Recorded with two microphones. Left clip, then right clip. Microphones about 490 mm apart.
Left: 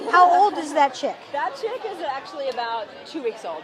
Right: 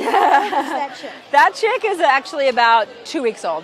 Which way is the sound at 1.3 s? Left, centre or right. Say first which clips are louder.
Right 18 dB; right.